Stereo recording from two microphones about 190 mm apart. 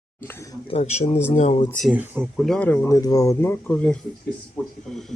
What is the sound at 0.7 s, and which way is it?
Speech, 35° left (ahead or behind).